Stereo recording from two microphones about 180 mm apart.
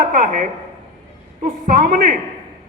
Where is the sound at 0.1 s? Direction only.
45° right (ahead or behind).